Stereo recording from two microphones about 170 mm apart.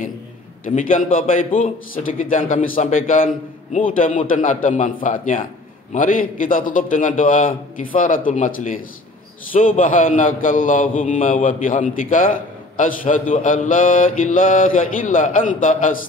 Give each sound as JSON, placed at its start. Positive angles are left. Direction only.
{"t": 0.7, "sound": "mantra", "side_deg": 50}